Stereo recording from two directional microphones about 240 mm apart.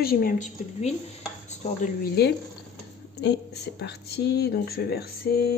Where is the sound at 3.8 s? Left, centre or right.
Left.